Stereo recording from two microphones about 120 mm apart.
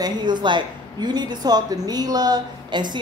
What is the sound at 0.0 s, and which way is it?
A woman's voice, 35° right (ahead or behind).